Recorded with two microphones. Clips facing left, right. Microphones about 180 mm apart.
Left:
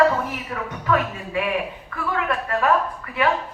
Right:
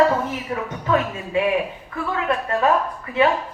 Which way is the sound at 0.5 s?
25° right (ahead or behind).